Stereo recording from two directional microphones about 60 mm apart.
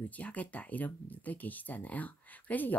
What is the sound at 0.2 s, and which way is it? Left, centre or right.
Speech, left.